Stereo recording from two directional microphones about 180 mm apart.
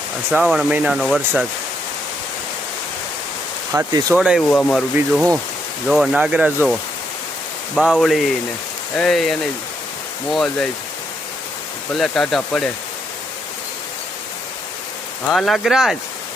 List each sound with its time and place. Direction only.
0.3 s speech: 5° right (ahead or behind)
3.7 s speech: 20° right (ahead or behind)
4.1 s speech: 5° right (ahead or behind)
4.4 s speech: 5° left (ahead or behind)
4.9 s speech: 15° right (ahead or behind)
5.9 s speech: centre (ahead or behind)
7.8 s speech: centre (ahead or behind)
11.9 s speech: centre (ahead or behind)
15.3 s speech: centre (ahead or behind)